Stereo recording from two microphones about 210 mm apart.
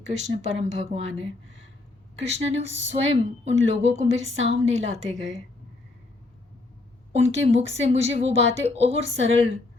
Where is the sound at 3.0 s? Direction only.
25° right (ahead or behind).